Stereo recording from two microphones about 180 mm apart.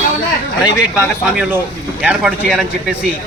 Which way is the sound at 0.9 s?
10° right (ahead or behind).